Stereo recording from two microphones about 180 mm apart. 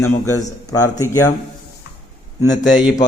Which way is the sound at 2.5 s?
45° left (ahead or behind).